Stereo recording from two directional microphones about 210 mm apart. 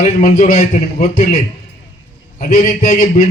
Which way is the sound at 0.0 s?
40° left (ahead or behind).